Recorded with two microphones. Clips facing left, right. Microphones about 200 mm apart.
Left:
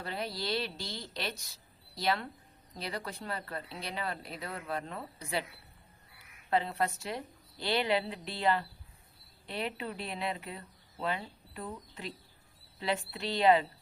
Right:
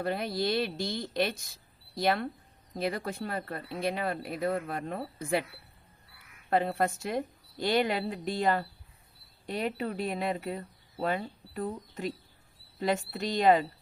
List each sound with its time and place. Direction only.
0.0 s speech: 55° right (ahead or behind)
2.7 s speech: 50° right (ahead or behind)
6.5 s speech: 50° right (ahead or behind)